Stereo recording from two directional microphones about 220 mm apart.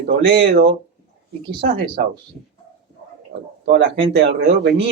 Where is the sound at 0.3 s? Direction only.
50° right (ahead or behind).